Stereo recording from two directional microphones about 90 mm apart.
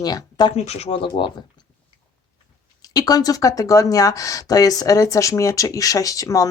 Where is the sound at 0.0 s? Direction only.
50° left (ahead or behind).